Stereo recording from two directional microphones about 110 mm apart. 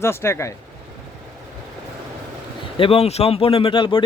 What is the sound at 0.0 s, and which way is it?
Speech, 25° left (ahead or behind).